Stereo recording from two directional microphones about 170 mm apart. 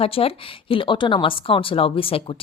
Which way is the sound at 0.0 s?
35° left (ahead or behind).